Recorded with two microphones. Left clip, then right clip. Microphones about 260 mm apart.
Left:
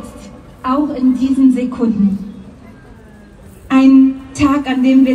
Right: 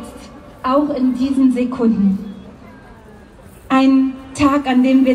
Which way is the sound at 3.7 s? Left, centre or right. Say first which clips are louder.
Left 4 dB; right.